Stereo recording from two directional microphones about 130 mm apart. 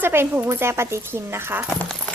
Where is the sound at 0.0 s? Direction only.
15° right (ahead or behind).